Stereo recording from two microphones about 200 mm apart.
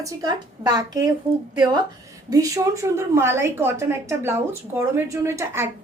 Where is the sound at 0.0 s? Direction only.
20° right (ahead or behind).